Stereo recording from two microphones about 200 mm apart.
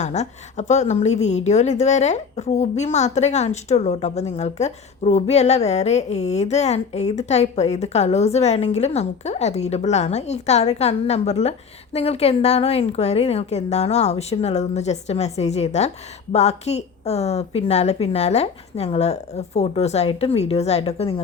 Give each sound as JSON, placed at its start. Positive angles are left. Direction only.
{"t": 0.0, "sound": "a woman's voice", "side_deg": 35}